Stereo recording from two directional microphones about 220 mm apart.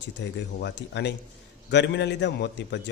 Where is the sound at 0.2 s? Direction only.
50° left (ahead or behind).